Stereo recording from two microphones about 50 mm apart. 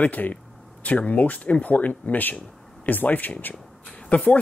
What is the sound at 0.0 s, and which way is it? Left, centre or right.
Speech, left.